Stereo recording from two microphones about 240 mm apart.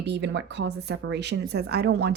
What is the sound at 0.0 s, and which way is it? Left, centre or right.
Speech, right.